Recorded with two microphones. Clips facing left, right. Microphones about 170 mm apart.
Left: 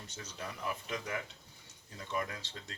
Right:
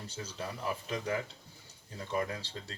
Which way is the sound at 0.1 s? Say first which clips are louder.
Right 4 dB; 30° right (ahead or behind).